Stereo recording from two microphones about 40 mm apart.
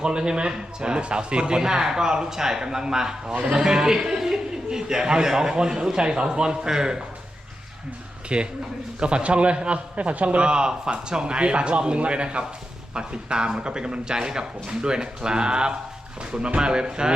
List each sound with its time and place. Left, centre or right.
0.0 s a man's voice: right
8.3 s a man's voice: right